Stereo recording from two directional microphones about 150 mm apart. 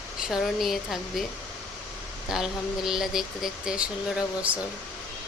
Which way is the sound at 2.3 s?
5° right (ahead or behind).